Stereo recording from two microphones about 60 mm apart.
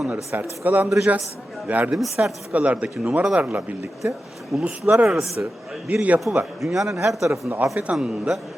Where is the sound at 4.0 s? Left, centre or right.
Centre.